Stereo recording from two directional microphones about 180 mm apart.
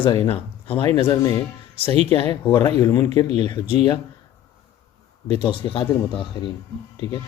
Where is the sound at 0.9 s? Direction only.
20° left (ahead or behind).